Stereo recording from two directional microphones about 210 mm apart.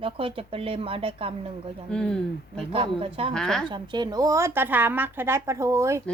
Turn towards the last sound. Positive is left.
turn(degrees=-15)  # may be behind; listen again after turning